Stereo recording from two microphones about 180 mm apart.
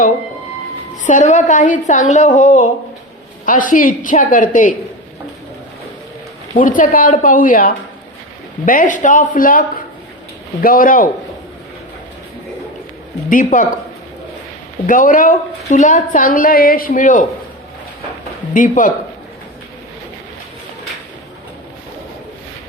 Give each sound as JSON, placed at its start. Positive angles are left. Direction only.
{"t": 1.0, "sound": "a woman's voice", "side_deg": 45}
{"t": 6.6, "sound": "a woman's voice", "side_deg": 50}
{"t": 13.3, "sound": "a woman's voice", "side_deg": 45}
{"t": 14.8, "sound": "a woman's voice", "side_deg": 45}
{"t": 18.5, "sound": "a woman's voice", "side_deg": 45}